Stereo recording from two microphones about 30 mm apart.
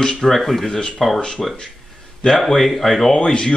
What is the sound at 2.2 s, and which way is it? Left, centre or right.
Speech, centre.